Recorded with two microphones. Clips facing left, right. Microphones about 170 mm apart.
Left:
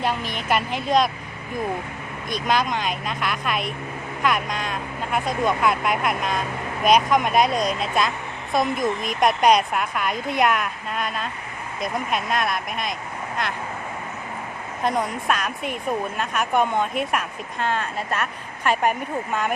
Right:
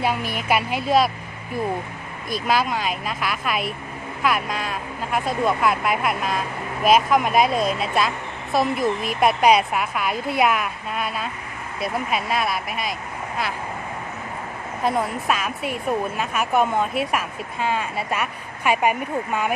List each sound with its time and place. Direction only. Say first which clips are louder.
0.0 s a woman's voice: right 2 dB; 10° right (ahead or behind)
2.3 s speech: right 1 dB; 5° right (ahead or behind)
14.8 s speech: right 1 dB; 5° right (ahead or behind)